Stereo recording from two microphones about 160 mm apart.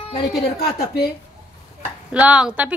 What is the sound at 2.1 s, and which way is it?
Speech, 10° right (ahead or behind).